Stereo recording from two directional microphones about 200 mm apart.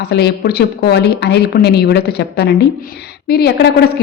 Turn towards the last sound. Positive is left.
turn(degrees=55)  # may be behind; listen again after turning